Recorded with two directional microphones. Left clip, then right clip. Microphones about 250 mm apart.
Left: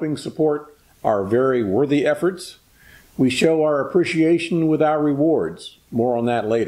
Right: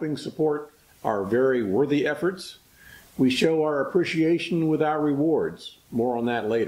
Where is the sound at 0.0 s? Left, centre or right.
Centre.